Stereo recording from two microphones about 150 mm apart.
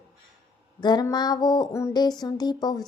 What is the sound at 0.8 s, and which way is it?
A woman's voice, 30° left (ahead or behind).